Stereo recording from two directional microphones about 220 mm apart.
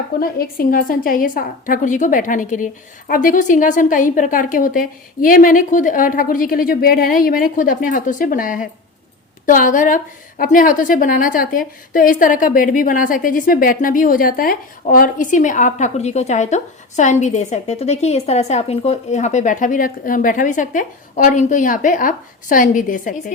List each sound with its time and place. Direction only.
0.2 s a woman's voice: 40° left (ahead or behind)